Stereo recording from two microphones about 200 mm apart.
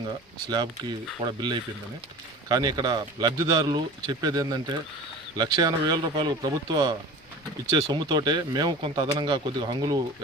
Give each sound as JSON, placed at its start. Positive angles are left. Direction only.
{"t": 0.5, "sound": "speech", "side_deg": -20}